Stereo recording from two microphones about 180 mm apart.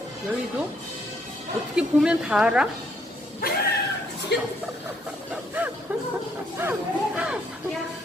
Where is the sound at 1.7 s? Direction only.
5° right (ahead or behind).